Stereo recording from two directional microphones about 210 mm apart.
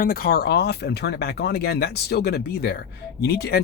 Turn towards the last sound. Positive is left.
turn(degrees=50)  # may be behind; listen again after turning